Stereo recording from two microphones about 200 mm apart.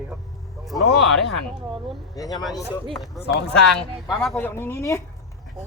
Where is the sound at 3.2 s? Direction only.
55° left (ahead or behind).